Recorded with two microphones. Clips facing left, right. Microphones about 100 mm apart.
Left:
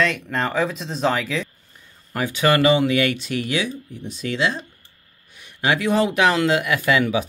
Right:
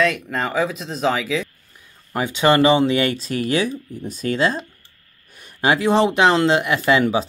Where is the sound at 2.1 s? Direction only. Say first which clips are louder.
Right 2 dB; 20° right (ahead or behind).